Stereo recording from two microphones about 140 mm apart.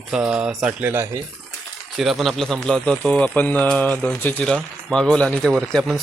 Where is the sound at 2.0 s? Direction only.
Centre (ahead or behind).